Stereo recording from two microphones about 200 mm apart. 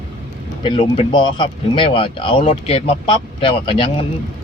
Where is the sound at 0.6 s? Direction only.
25° left (ahead or behind).